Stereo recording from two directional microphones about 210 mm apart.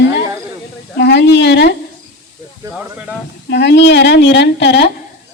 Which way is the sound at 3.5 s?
55° left (ahead or behind).